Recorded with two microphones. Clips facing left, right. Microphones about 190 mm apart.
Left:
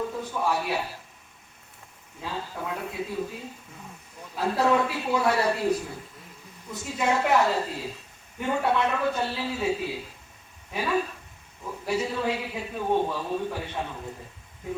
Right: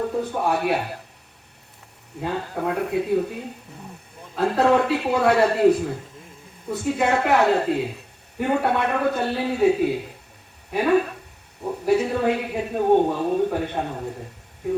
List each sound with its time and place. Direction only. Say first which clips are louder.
0.0 s a man's voice: right 5 dB; 60° right (ahead or behind)
2.2 s a man's voice: right 8 dB; 60° right (ahead or behind)
4.4 s a man's voice: right 5 dB; 55° right (ahead or behind)
6.7 s a man's voice: right 6 dB; 60° right (ahead or behind)